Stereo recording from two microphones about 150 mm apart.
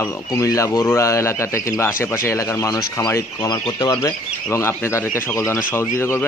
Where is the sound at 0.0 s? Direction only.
20° left (ahead or behind).